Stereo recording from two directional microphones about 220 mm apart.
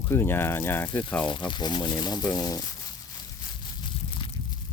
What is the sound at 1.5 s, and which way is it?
Speech, 20° left (ahead or behind).